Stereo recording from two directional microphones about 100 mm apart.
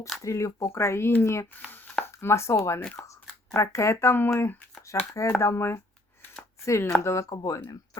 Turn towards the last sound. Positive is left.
turn(degrees=40)  # may be behind; listen again after turning